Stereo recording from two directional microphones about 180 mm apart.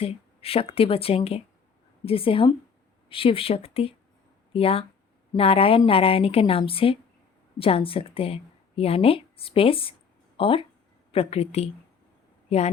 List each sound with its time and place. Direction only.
0.0 s speech: 35° left (ahead or behind)